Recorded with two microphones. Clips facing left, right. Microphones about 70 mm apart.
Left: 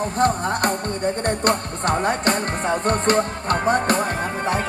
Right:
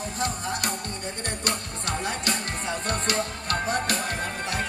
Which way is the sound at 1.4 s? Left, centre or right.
Left.